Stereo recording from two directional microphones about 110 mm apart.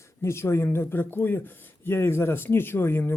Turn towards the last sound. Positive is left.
turn(degrees=20)  # may be behind; listen again after turning